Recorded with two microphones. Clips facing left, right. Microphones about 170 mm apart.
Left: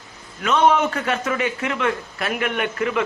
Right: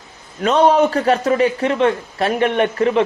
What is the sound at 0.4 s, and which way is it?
A man's voice, 35° right (ahead or behind).